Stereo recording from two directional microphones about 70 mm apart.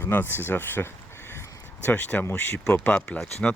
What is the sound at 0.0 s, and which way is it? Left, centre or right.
Speech, left.